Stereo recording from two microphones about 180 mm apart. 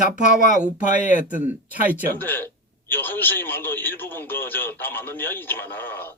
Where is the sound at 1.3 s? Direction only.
10° right (ahead or behind).